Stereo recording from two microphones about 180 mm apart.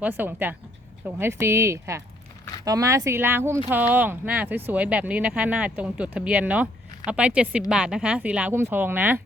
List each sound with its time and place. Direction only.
0.0 s speech: 10° right (ahead or behind)